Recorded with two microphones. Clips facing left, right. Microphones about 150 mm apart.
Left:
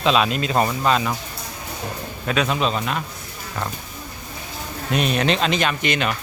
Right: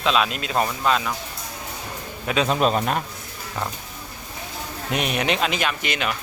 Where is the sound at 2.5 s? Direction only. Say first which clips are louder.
Right 2 dB; 45° right (ahead or behind).